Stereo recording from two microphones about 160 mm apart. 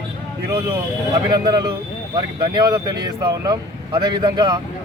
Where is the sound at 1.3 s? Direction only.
25° right (ahead or behind).